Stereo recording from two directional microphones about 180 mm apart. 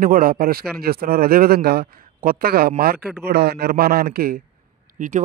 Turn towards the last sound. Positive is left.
turn(degrees=-45)  # may be behind; listen again after turning